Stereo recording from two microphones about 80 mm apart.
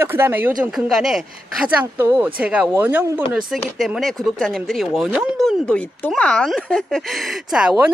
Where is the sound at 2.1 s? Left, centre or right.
Centre.